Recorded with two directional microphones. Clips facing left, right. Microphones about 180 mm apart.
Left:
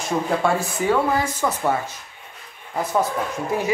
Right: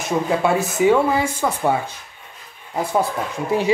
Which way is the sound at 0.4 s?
10° right (ahead or behind).